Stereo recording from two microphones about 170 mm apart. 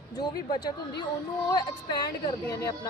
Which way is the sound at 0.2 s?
25° left (ahead or behind).